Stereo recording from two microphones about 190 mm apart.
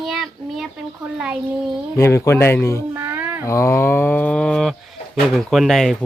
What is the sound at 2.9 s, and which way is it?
Cat, 10° right (ahead or behind).